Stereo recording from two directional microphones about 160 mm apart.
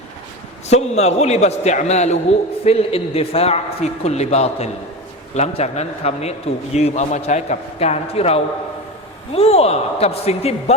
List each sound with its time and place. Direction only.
0.7 s a man's voice: 45° left (ahead or behind)